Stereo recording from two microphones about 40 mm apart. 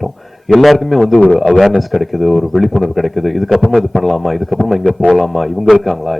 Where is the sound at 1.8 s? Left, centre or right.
Centre.